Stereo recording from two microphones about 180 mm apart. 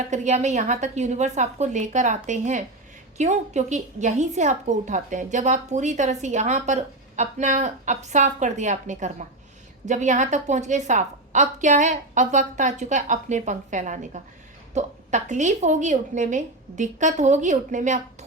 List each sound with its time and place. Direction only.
0.0 s a woman's voice: 40° right (ahead or behind)